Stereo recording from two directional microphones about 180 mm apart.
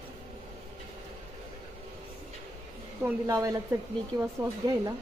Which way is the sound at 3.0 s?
20° right (ahead or behind).